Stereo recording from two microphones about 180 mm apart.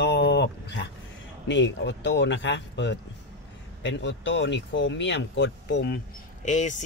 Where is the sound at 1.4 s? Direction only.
90° left; by 6.0 s 70° left (ahead or behind).